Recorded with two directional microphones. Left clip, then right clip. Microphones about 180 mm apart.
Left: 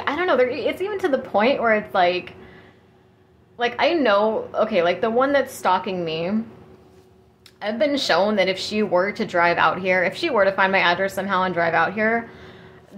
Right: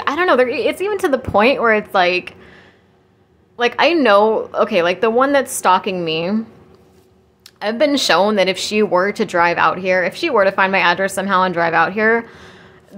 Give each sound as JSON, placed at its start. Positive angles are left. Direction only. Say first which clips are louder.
{"t": 0.0, "sound": "a woman's voice", "louder": "right 5 dB", "side_deg": -35}
{"t": 7.4, "sound": "speech", "louder": "right 5 dB", "side_deg": -35}